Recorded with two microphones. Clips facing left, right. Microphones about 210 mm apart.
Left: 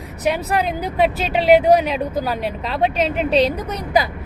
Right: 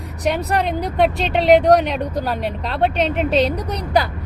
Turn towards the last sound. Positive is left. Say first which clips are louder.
# left 1 dB
turn(degrees=0)  # may be behind; listen again after turning